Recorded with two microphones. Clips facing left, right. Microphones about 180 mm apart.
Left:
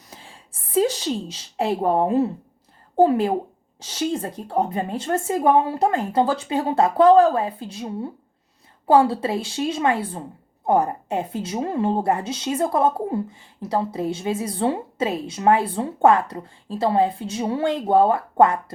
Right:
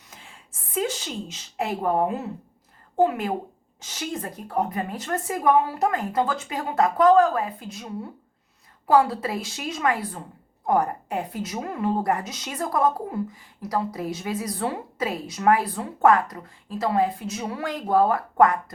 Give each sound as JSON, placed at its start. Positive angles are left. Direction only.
{"t": 0.1, "sound": "a woman's voice", "side_deg": 30}